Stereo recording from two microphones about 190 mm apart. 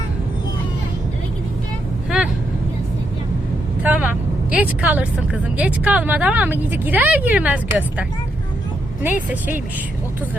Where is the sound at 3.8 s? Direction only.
10° right (ahead or behind).